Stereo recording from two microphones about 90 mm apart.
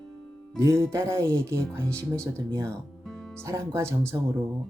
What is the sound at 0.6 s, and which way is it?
Speech, 30° right (ahead or behind).